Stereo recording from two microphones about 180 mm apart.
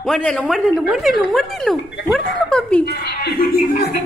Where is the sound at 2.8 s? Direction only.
60° left (ahead or behind).